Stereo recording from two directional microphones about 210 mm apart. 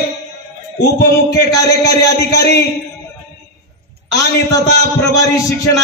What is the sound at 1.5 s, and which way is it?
Speech, 15° left (ahead or behind).